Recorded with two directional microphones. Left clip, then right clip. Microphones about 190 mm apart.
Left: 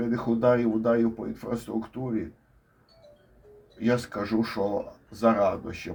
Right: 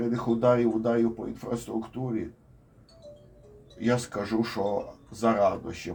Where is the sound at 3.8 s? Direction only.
20° left (ahead or behind).